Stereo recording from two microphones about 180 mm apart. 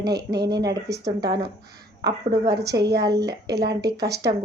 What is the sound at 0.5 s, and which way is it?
Speech, 20° right (ahead or behind).